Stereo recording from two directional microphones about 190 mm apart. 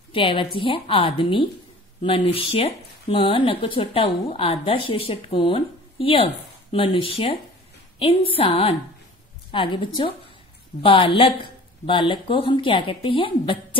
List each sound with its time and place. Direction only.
0.1 s a woman's voice: 25° left (ahead or behind)